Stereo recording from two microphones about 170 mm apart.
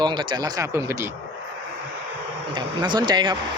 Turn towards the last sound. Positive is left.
turn(degrees=-25)  # may be behind; listen again after turning